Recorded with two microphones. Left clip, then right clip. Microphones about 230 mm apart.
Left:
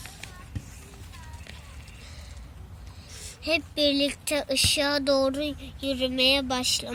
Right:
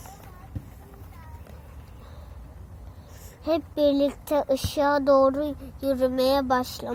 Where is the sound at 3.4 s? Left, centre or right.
Right.